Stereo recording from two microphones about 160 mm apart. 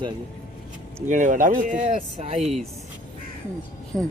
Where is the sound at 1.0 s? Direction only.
50° right (ahead or behind).